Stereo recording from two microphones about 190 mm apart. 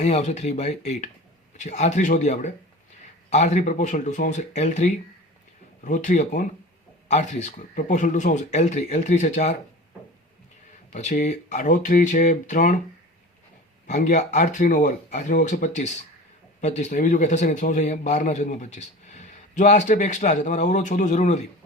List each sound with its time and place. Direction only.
0.0 s a man's voice: 35° left (ahead or behind)
10.9 s a man's voice: 40° left (ahead or behind)
13.8 s a man's voice: 40° left (ahead or behind)